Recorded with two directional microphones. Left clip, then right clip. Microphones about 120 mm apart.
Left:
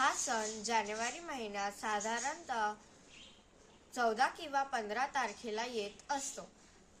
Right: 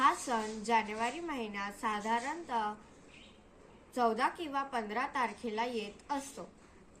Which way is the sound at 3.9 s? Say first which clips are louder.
Right 2 dB; 30° left (ahead or behind).